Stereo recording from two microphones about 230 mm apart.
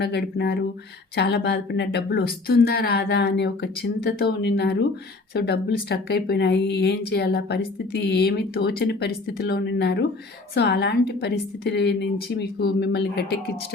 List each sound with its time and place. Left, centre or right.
0.0 s speech: left